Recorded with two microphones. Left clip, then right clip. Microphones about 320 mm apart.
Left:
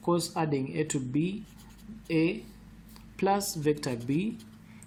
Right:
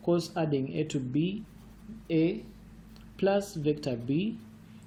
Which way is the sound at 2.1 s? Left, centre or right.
Centre.